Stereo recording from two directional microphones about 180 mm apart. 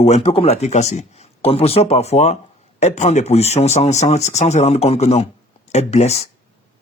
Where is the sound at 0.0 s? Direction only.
35° left (ahead or behind).